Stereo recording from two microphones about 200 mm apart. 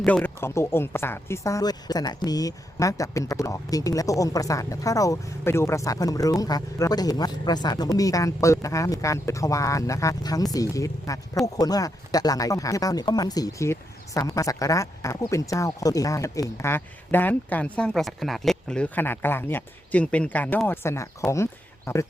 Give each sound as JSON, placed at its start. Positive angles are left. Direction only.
{"t": 0.0, "sound": "speech", "side_deg": 5}